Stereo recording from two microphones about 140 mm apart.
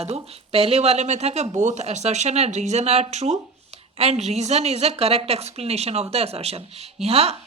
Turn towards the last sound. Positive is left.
turn(degrees=-50)  # may be behind; listen again after turning